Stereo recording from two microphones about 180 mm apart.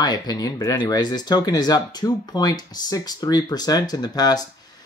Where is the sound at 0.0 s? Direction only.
20° left (ahead or behind).